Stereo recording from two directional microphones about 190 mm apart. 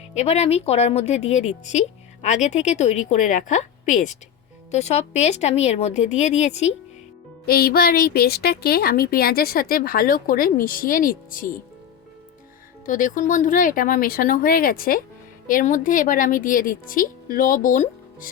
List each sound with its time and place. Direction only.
0.1 s speech: 35° left (ahead or behind)
7.4 s a woman's voice: 55° left (ahead or behind)
12.8 s a woman's voice: 45° left (ahead or behind)